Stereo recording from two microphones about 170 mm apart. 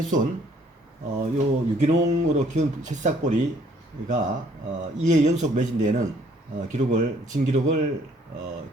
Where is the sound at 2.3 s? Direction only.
45° right (ahead or behind).